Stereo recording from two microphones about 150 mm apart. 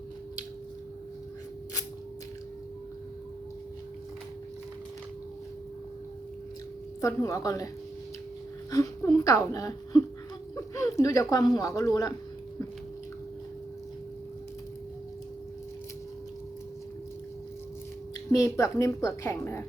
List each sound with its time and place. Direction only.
7.0 s speech: 20° left (ahead or behind)
8.7 s speech: 25° left (ahead or behind)
18.3 s speech: 20° left (ahead or behind)